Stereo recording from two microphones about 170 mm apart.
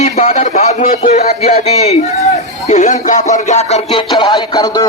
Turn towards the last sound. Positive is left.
turn(degrees=20)  # may be behind; listen again after turning